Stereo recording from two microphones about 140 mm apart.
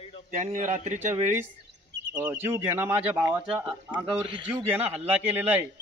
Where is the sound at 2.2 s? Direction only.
15° right (ahead or behind).